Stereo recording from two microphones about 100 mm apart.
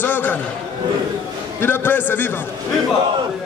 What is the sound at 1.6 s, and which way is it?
Speech, 20° left (ahead or behind).